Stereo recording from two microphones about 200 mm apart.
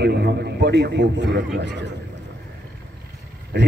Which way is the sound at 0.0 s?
55° right (ahead or behind).